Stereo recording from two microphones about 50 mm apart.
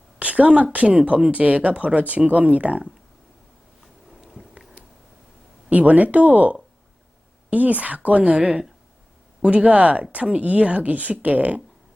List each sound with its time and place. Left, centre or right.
0.2 s speech: right
5.7 s speech: right